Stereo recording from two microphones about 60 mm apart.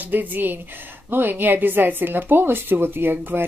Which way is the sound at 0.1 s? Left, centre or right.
Right.